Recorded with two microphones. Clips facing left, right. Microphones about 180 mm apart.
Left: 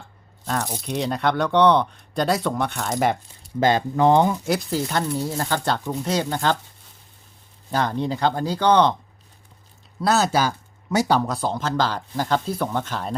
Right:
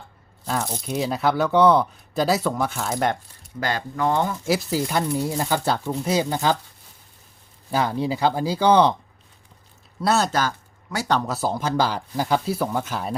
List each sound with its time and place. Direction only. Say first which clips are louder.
0.4 s speech: even; 5° right (ahead or behind)
3.6 s speech: left 6 dB; 20° left (ahead or behind)
4.4 s speech: right 1 dB; 5° right (ahead or behind)
7.7 s speech: even; 10° right (ahead or behind)
10.0 s speech: left 1 dB; centre (ahead or behind)
11.3 s speech: right 1 dB; 5° right (ahead or behind)